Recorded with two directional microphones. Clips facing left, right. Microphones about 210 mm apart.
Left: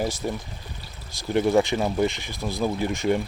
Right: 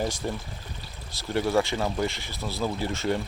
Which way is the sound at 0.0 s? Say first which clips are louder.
Left 2 dB; 10° left (ahead or behind).